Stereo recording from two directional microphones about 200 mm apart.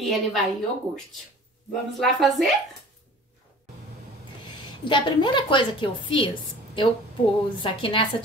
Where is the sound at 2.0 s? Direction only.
Centre (ahead or behind).